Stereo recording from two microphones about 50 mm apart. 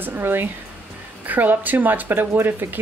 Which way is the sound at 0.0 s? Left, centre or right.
Right.